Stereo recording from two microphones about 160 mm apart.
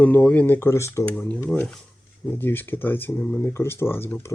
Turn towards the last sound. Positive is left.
turn(degrees=10)  # may be behind; listen again after turning